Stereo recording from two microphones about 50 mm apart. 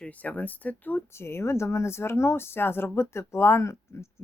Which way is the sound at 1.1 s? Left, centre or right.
Left.